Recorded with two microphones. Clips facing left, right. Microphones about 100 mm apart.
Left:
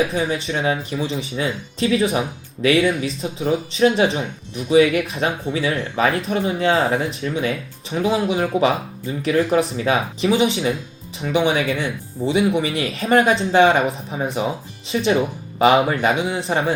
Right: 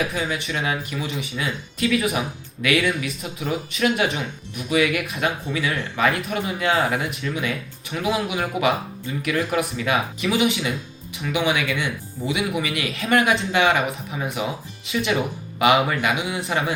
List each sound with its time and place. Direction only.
0.1 s speech: 30° left (ahead or behind)